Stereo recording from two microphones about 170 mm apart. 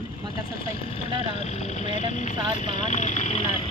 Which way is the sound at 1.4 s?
40° left (ahead or behind).